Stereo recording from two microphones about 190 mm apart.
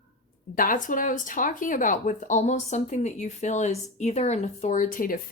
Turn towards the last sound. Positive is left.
turn(degrees=45)  # may be behind; listen again after turning